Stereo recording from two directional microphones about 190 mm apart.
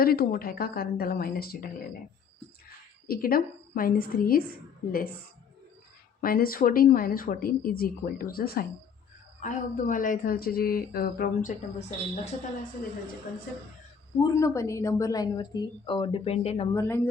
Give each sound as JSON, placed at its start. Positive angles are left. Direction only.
{"t": 0.0, "sound": "speech", "side_deg": 50}
{"t": 3.1, "sound": "speech", "side_deg": 50}
{"t": 6.2, "sound": "speech", "side_deg": 50}
{"t": 11.8, "sound": "a woman's voice", "side_deg": 40}
{"t": 14.2, "sound": "a woman's voice", "side_deg": 20}
{"t": 16.7, "sound": "speech", "side_deg": 15}